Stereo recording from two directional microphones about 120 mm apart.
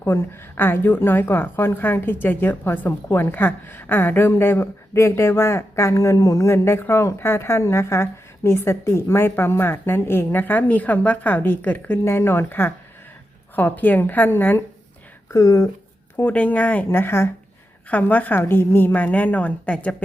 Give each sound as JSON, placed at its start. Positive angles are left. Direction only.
{"t": 0.0, "sound": "a woman's voice", "side_deg": 20}
{"t": 15.3, "sound": "a woman's voice", "side_deg": 30}
{"t": 16.1, "sound": "a woman's voice", "side_deg": 15}